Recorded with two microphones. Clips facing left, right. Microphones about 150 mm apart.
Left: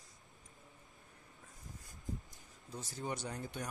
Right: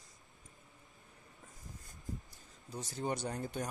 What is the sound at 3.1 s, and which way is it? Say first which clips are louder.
Speech: right 4 dB; 40° right (ahead or behind).